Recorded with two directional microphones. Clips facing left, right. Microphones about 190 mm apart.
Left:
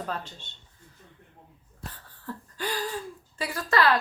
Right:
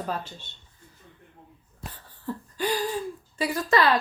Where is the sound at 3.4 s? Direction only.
20° right (ahead or behind).